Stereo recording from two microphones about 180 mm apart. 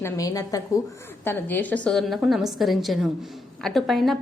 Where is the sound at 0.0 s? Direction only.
20° left (ahead or behind).